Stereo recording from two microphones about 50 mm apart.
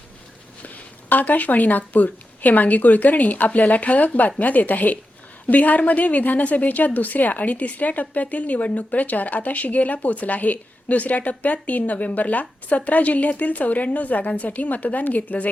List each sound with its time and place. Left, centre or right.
1.1 s a woman's voice: left